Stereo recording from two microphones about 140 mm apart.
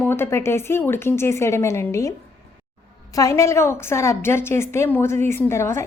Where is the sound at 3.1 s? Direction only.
25° left (ahead or behind).